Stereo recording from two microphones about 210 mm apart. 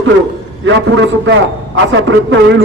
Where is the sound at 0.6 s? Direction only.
60° right (ahead or behind).